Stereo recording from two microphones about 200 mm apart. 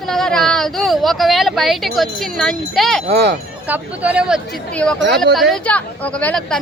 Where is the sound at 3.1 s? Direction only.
55° right (ahead or behind).